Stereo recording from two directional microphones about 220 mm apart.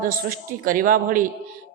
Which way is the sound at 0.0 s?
40° right (ahead or behind).